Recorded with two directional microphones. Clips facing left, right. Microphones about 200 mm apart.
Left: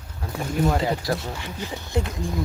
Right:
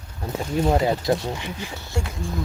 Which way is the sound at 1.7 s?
20° left (ahead or behind).